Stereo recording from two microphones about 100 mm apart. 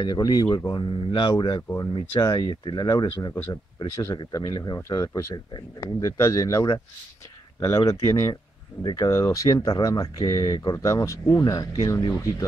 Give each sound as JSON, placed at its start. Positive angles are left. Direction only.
{"t": 0.0, "sound": "speech", "side_deg": 45}
{"t": 1.7, "sound": "speech", "side_deg": 30}